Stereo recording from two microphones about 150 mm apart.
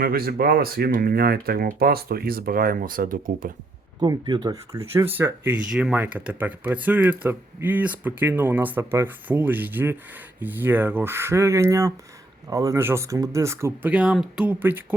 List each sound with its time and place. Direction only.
0.0 s speech: 80° right; by 3.5 s 65° right (ahead or behind)
4.0 s speech: 30° right (ahead or behind)
13.9 s speech: 5° right (ahead or behind)